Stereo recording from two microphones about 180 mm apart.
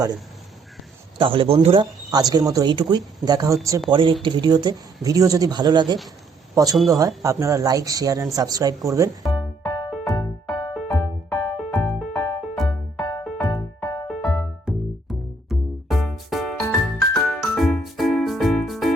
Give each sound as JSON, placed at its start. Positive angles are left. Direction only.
{"t": 1.2, "sound": "speech", "side_deg": -30}
{"t": 3.8, "sound": "speech", "side_deg": -30}
{"t": 9.3, "sound": "music", "side_deg": 25}
{"t": 10.8, "sound": "music", "side_deg": 0}
{"t": 11.3, "sound": "music", "side_deg": 10}
{"t": 14.1, "sound": "music", "side_deg": 0}